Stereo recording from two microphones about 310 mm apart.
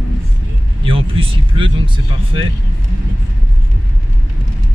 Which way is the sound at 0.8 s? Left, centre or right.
Centre.